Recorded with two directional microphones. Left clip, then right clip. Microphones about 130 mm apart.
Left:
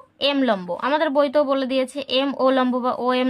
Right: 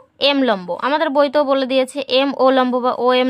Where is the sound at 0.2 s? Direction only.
45° right (ahead or behind).